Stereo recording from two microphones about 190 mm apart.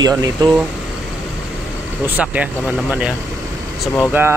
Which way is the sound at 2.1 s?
5° right (ahead or behind).